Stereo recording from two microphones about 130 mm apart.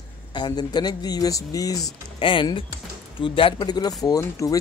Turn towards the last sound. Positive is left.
turn(degrees=25)  # may be behind; listen again after turning